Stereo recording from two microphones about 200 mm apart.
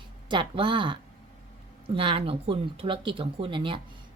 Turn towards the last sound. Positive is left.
turn(degrees=-25)  # may be behind; listen again after turning